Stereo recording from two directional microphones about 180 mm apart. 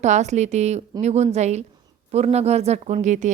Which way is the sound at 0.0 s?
40° right (ahead or behind).